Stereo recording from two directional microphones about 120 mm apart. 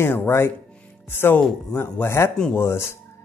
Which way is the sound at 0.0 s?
20° left (ahead or behind).